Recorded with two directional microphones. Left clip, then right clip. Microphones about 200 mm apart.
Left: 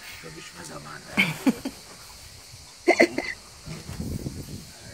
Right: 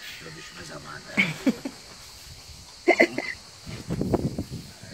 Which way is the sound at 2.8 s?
10° left (ahead or behind).